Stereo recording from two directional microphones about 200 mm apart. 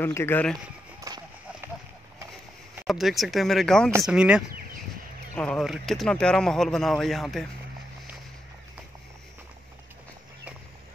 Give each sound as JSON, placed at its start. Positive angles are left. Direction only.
{"t": 0.0, "sound": "speech", "side_deg": 10}
{"t": 1.0, "sound": "a sound", "side_deg": -20}
{"t": 2.7, "sound": "speech", "side_deg": 0}